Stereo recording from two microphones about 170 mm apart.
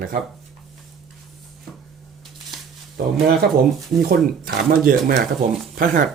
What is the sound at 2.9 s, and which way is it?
Speech, 60° right (ahead or behind).